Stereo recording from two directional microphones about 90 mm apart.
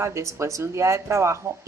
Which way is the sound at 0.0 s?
35° right (ahead or behind).